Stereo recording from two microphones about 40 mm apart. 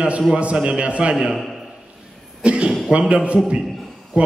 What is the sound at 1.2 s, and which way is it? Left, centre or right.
Speech, centre.